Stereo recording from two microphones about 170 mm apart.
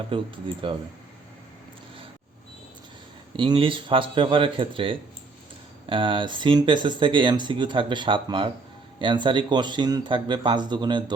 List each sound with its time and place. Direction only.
0.1 s a man's voice: 30° right (ahead or behind)
3.3 s a man's voice: 30° right (ahead or behind)